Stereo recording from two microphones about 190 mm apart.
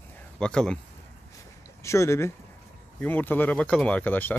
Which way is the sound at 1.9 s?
15° left (ahead or behind).